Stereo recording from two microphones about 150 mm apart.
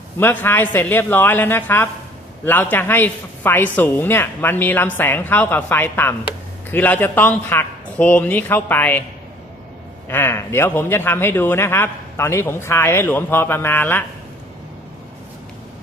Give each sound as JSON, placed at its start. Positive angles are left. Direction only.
{"t": 0.2, "sound": "speech", "side_deg": 15}
{"t": 10.1, "sound": "speech", "side_deg": 15}